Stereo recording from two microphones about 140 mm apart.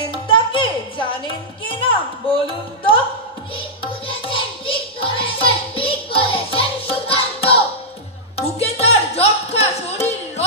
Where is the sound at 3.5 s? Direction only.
40° left (ahead or behind).